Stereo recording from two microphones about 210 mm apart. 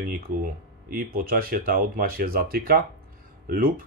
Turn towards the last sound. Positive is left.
turn(degrees=-45)  # may be behind; listen again after turning